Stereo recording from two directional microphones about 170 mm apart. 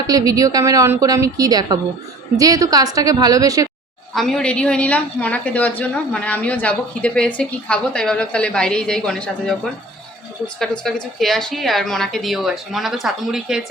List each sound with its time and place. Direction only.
0.1 s a woman's voice: 20° right (ahead or behind)
4.1 s a woman's voice: centre (ahead or behind)
10.6 s a woman's voice: centre (ahead or behind)